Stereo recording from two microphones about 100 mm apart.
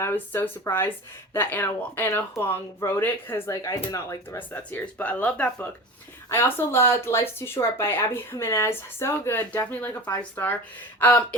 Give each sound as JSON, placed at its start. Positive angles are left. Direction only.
{"t": 0.0, "sound": "speech", "side_deg": 20}
{"t": 3.5, "sound": "speech", "side_deg": 35}
{"t": 4.4, "sound": "speech", "side_deg": 20}
{"t": 6.2, "sound": "speech", "side_deg": 25}